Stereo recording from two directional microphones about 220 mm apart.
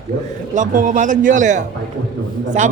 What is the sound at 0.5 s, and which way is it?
Speech, 35° right (ahead or behind).